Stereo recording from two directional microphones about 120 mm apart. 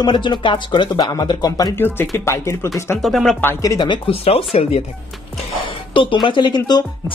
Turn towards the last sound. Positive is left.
turn(degrees=35)  # may be behind; listen again after turning